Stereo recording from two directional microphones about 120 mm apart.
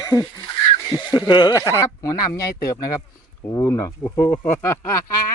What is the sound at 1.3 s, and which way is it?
Speech, 35° left (ahead or behind).